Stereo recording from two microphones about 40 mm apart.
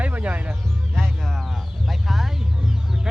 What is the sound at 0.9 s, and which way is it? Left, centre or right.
Music, centre.